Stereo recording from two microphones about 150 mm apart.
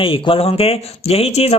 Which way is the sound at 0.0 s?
35° left (ahead or behind).